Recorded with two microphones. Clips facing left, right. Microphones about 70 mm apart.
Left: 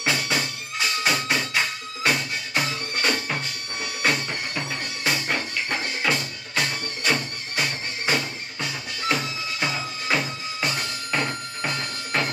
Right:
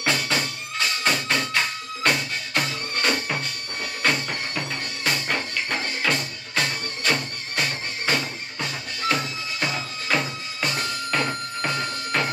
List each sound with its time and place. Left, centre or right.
0.0 s music: centre